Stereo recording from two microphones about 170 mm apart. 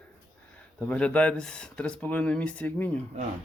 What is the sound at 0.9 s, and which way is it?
Speech, 10° left (ahead or behind).